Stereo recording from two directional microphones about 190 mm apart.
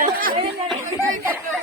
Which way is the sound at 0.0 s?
50° right (ahead or behind).